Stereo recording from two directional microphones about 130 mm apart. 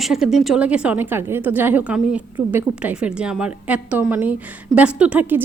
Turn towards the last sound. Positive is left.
turn(degrees=-15)  # may be behind; listen again after turning